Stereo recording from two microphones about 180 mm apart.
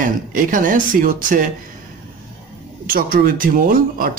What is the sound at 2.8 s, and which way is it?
Speech, 55° right (ahead or behind).